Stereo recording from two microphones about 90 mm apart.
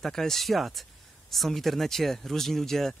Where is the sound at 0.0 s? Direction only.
5° left (ahead or behind).